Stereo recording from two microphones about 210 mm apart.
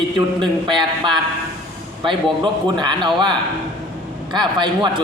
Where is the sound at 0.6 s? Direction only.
20° right (ahead or behind).